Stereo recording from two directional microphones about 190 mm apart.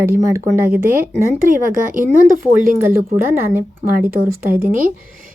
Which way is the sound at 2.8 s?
10° right (ahead or behind).